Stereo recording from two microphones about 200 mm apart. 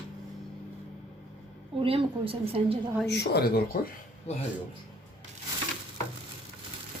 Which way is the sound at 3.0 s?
55° left (ahead or behind).